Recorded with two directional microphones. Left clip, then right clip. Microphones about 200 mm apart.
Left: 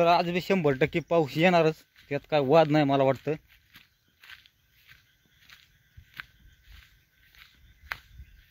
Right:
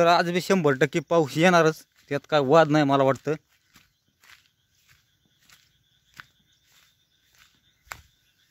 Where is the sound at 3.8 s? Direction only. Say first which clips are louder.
Left 3 dB; 10° right (ahead or behind).